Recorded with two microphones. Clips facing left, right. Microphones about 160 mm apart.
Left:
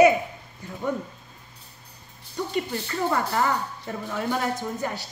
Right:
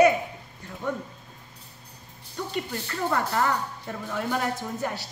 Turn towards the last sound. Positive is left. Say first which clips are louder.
# left 1 dB
turn(degrees=0)  # may be behind; listen again after turning